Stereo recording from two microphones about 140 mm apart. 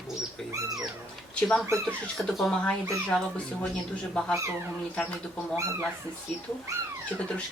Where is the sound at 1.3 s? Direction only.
5° left (ahead or behind).